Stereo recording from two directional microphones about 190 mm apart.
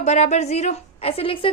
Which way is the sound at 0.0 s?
35° left (ahead or behind).